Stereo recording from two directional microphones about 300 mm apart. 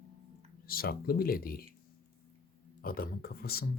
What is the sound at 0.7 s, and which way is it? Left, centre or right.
Speech, left.